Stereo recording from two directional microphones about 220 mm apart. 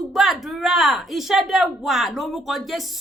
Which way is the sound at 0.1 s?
Centre (ahead or behind).